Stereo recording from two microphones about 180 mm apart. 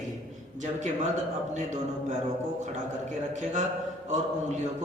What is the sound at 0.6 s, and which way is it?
A man's voice, 40° right (ahead or behind).